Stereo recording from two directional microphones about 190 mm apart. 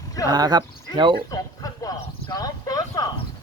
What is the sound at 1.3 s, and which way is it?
Speech, 20° left (ahead or behind).